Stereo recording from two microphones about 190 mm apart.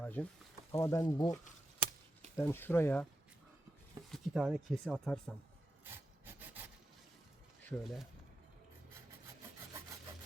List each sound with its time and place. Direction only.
0.0 s snake: 5° left (ahead or behind)
0.7 s speech: 15° left (ahead or behind)
2.4 s speech: 10° left (ahead or behind)
4.1 s speech: centre (ahead or behind)
7.7 s speech: centre (ahead or behind)